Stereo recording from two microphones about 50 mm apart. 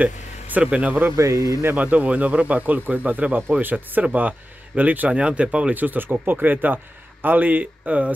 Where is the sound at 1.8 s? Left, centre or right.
Right.